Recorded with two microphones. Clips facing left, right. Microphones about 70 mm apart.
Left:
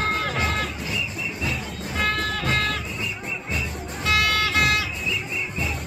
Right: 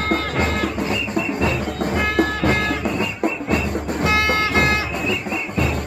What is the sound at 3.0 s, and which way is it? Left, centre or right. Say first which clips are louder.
Music: right 9 dB; right.